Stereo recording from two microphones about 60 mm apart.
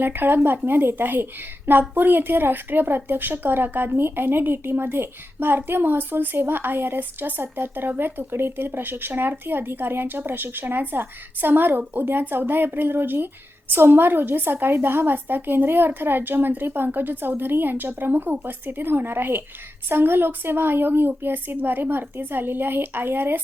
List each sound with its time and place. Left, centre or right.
0.0 s speech: right